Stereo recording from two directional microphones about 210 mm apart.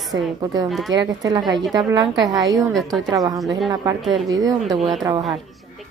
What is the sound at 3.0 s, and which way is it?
Speech, 15° right (ahead or behind).